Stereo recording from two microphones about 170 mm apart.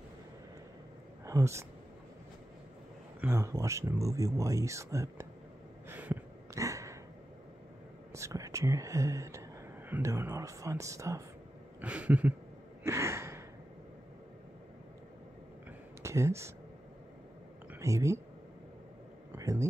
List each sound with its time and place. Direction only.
1.2 s speech: 15° right (ahead or behind)
3.2 s speech: 15° right (ahead or behind)
5.9 s a sound: 10° right (ahead or behind)
8.1 s speech: 20° right (ahead or behind)
11.8 s speech: 5° right (ahead or behind)
12.8 s gasp: 15° right (ahead or behind)
16.0 s speech: 15° right (ahead or behind)
17.7 s speech: 20° right (ahead or behind)
19.3 s speech: 15° right (ahead or behind)